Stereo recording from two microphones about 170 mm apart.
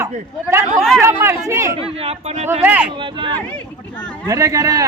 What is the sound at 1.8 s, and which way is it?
Speech, 35° right (ahead or behind).